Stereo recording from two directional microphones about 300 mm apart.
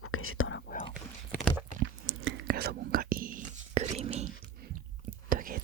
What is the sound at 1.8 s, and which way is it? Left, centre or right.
Whispering, right.